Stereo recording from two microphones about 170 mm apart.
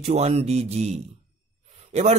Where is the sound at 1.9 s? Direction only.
40° right (ahead or behind).